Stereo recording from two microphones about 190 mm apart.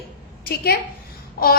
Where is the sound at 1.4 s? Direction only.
50° left (ahead or behind).